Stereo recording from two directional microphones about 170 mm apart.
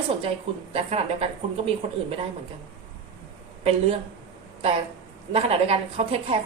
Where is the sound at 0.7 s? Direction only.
35° right (ahead or behind).